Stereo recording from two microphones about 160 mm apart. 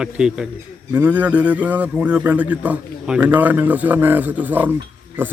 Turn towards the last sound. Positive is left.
turn(degrees=-15)  # may be behind; listen again after turning